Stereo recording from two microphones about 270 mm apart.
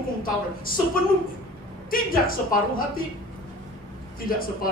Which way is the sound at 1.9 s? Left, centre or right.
Left.